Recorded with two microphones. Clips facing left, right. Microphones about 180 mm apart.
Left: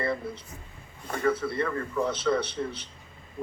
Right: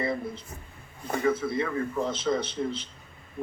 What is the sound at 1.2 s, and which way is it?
A man's voice, 60° left (ahead or behind).